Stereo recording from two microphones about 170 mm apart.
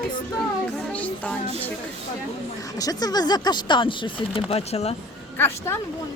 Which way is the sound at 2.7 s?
20° left (ahead or behind).